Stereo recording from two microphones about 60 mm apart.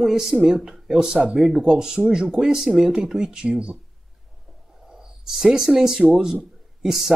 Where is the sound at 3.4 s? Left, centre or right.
Centre.